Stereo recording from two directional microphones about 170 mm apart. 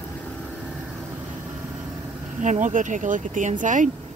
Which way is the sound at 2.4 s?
45° right (ahead or behind).